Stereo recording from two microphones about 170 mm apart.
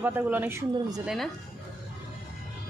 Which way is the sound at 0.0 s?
10° right (ahead or behind).